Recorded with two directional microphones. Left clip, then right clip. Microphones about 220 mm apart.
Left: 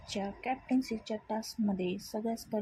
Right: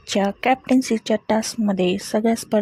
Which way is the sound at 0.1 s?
45° right (ahead or behind).